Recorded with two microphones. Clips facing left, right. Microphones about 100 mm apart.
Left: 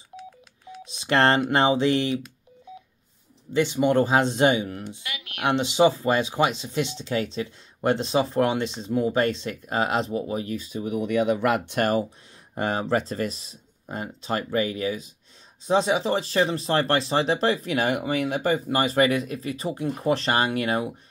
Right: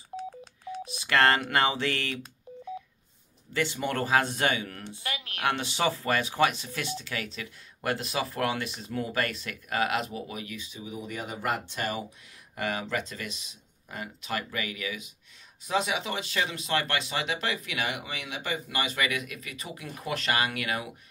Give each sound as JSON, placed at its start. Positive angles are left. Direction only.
{"t": 0.1, "sound": "telephone dialing", "side_deg": -35}
{"t": 0.8, "sound": "telephone dialing", "side_deg": 25}
{"t": 1.5, "sound": "speech", "side_deg": 20}
{"t": 3.5, "sound": "speech", "side_deg": 20}
{"t": 5.0, "sound": "a sound", "side_deg": -35}
{"t": 5.4, "sound": "speech", "side_deg": 20}
{"t": 10.8, "sound": "speech", "side_deg": 65}
{"t": 12.5, "sound": "speech", "side_deg": 35}